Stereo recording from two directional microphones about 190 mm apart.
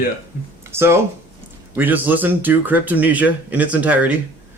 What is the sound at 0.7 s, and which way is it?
Speech, 15° right (ahead or behind).